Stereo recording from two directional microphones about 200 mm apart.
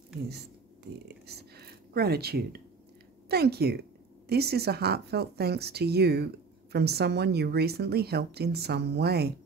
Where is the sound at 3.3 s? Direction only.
55° right (ahead or behind).